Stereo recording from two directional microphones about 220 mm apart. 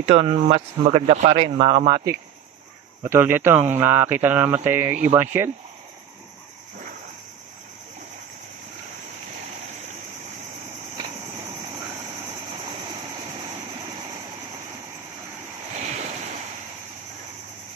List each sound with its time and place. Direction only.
0.0 s speech: 25° right (ahead or behind)
3.0 s speech: 10° right (ahead or behind)